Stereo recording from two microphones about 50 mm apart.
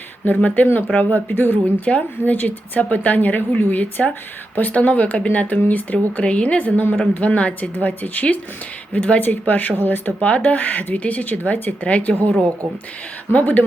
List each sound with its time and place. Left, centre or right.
0.3 s a woman's voice: left
1.8 s a woman's voice: left
6.2 s a woman's voice: left
10.2 s a woman's voice: left
13.3 s a woman's voice: left